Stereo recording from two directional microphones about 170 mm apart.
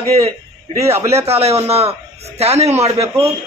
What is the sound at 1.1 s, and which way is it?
A man's voice, 35° right (ahead or behind).